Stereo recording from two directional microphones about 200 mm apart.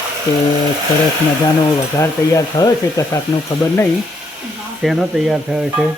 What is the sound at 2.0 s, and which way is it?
Speech, 20° left (ahead or behind).